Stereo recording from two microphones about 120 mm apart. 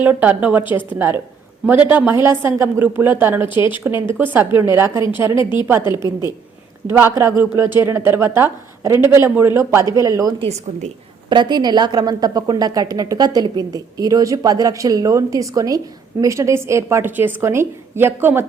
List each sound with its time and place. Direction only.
0.0 s a woman's voice: 15° right (ahead or behind)
5.8 s a woman's voice: 35° left (ahead or behind)
6.8 s a woman's voice: 20° right (ahead or behind)
11.3 s a woman's voice: 40° right (ahead or behind); by 18.4 s 20° right (ahead or behind)